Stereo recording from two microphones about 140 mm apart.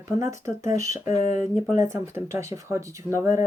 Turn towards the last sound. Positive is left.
turn(degrees=-20)  # may be behind; listen again after turning